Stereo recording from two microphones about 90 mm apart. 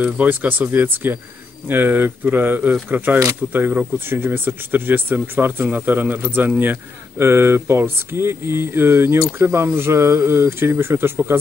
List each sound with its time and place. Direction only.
0.0 s speech: 20° right (ahead or behind)